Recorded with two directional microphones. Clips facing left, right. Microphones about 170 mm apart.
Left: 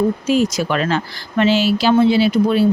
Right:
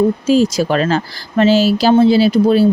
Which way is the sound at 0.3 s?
30° right (ahead or behind).